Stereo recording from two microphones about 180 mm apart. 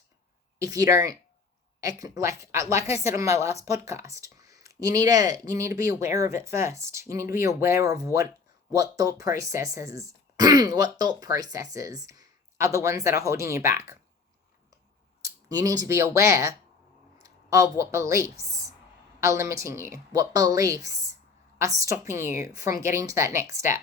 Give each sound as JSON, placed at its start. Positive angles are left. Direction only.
{"t": 0.6, "sound": "a woman's voice", "side_deg": -20}
{"t": 15.2, "sound": "a woman's voice", "side_deg": -20}